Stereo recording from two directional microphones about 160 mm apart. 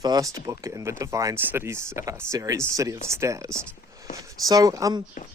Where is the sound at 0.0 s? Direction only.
20° right (ahead or behind).